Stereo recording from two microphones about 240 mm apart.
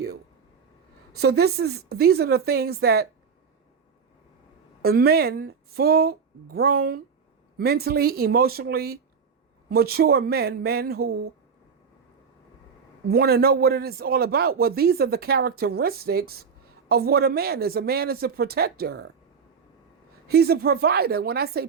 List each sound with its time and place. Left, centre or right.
1.2 s a man's voice: right
4.8 s a man's voice: right
13.1 s a man's voice: right
20.2 s a man's voice: right